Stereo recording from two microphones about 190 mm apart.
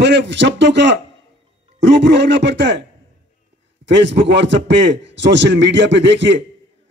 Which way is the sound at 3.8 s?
70° right (ahead or behind).